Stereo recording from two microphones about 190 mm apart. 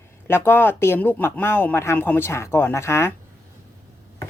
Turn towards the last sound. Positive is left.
turn(degrees=15)  # may be behind; listen again after turning